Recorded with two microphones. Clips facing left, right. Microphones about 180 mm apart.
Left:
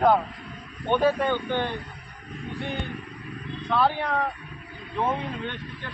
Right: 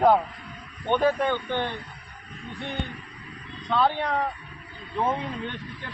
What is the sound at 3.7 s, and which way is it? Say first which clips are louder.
Speech: even; 10° left (ahead or behind).